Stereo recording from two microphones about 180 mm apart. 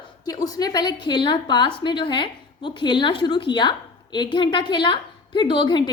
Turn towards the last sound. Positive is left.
turn(degrees=25)  # may be behind; listen again after turning